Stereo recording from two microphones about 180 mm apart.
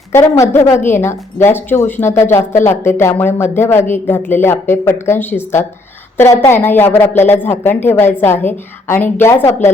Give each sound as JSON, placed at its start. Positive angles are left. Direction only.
{"t": 0.1, "sound": "speech", "side_deg": 15}